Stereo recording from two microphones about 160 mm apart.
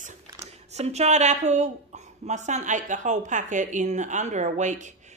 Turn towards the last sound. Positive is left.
turn(degrees=-50)  # may be behind; listen again after turning